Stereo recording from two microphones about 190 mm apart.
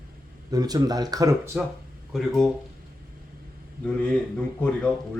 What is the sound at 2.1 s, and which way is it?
Speech, centre (ahead or behind).